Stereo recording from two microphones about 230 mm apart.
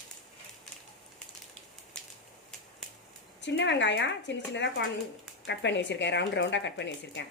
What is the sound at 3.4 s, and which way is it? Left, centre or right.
A woman's voice, left.